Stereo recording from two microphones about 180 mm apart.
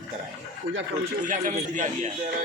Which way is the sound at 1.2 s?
45° right (ahead or behind).